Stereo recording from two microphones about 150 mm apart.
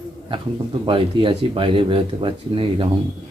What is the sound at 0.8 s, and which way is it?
Speech, 35° right (ahead or behind).